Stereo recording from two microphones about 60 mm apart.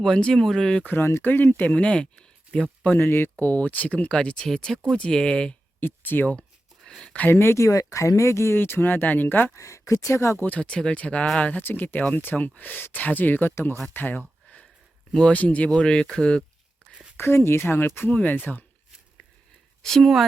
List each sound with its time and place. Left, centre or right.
0.0 s speech: centre
0.9 s speech: left
1.7 s speech: centre
2.8 s speech: left; by 5.5 s centre
5.8 s speech: left
6.8 s a sound: centre
7.3 s speech: left
9.6 s speech: left
10.3 s speech: left
11.6 s speech: left
13.9 s a sound: left
15.3 s speech: left
17.2 s speech: left
19.8 s speech: centre